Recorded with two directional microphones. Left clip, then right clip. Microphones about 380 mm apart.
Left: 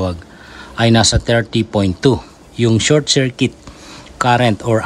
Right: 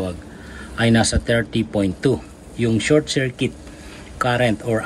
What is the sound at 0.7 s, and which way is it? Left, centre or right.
A man's voice, centre.